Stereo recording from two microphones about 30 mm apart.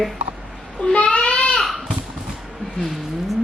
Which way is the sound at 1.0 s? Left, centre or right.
Left.